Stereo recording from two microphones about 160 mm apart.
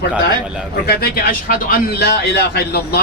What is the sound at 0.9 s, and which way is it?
A man's voice, 70° left (ahead or behind).